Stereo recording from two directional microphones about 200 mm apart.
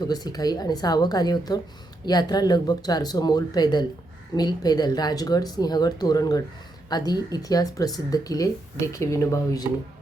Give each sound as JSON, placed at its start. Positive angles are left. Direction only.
{"t": 0.0, "sound": "speech", "side_deg": 20}